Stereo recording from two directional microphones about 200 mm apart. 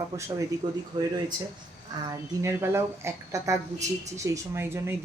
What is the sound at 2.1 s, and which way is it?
Speech, 15° right (ahead or behind).